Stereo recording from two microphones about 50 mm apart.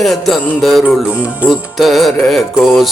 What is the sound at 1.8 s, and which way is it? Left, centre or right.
Music, centre.